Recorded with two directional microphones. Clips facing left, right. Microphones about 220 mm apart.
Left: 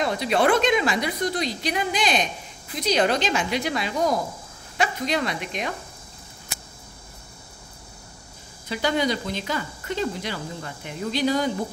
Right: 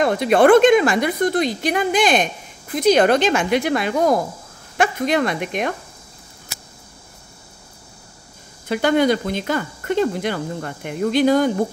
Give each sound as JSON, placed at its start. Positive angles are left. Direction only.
{"t": 0.0, "sound": "a woman's voice", "side_deg": -55}
{"t": 8.6, "sound": "speech", "side_deg": -55}